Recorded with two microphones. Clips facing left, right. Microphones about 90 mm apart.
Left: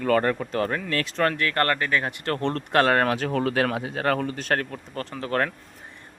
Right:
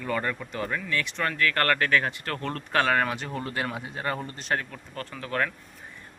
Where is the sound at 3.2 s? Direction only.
90° left; by 5.5 s 45° left (ahead or behind).